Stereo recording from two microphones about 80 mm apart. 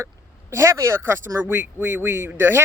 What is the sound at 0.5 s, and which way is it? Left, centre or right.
Speech, right.